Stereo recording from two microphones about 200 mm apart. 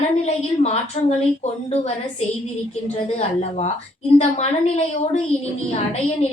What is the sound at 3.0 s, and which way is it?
A woman's voice, 30° left (ahead or behind).